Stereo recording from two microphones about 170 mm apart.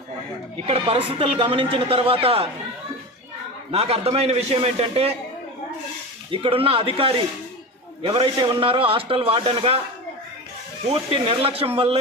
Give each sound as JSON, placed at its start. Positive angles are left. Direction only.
{"t": 0.6, "sound": "speech", "side_deg": -35}
{"t": 3.7, "sound": "speech", "side_deg": -35}
{"t": 6.3, "sound": "speech", "side_deg": -30}
{"t": 10.9, "sound": "speech", "side_deg": -35}